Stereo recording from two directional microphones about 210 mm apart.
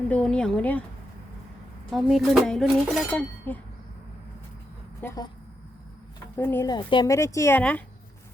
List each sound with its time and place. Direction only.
0.1 s speech: 5° left (ahead or behind)
1.9 s speech: centre (ahead or behind)
4.9 s speech: 10° left (ahead or behind)
6.3 s a woman's voice: 10° left (ahead or behind)